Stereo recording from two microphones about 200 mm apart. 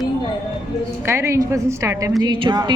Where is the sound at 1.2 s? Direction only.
15° right (ahead or behind).